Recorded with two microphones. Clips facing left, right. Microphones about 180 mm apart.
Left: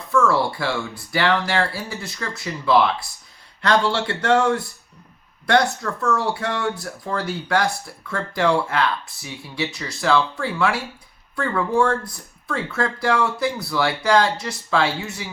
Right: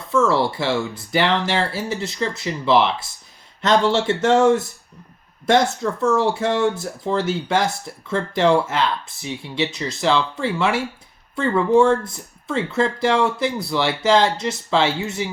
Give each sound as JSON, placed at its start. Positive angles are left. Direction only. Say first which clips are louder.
{"t": 0.1, "sound": "speech", "louder": "right 1 dB", "side_deg": -20}